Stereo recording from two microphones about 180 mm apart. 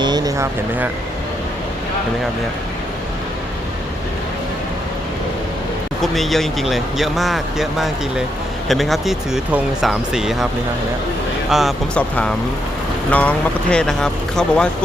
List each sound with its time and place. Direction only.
0.0 s vehicle: 20° right (ahead or behind)
6.0 s speech: centre (ahead or behind)
11.5 s speech: 5° left (ahead or behind)